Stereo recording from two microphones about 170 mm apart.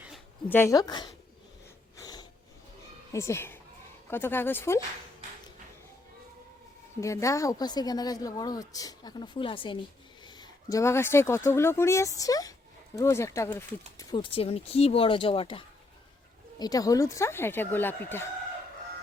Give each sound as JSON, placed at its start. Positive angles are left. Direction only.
{"t": 0.4, "sound": "a woman's voice", "side_deg": 15}
{"t": 2.0, "sound": "snort", "side_deg": 25}
{"t": 3.1, "sound": "speech", "side_deg": 15}
{"t": 7.0, "sound": "a woman's voice", "side_deg": 20}
{"t": 14.1, "sound": "speech", "side_deg": 30}
{"t": 16.6, "sound": "speech", "side_deg": 20}